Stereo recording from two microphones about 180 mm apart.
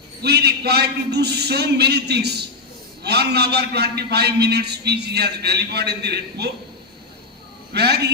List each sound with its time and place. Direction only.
0.2 s a man's voice: 65° right (ahead or behind)
7.7 s a man's voice: 65° right (ahead or behind)